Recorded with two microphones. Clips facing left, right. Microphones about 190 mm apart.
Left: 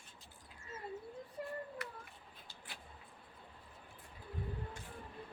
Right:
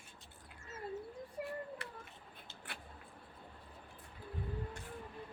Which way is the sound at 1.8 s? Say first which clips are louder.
Left 2 dB; 30° right (ahead or behind).